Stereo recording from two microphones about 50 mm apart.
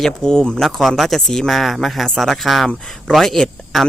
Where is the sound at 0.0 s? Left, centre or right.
Centre.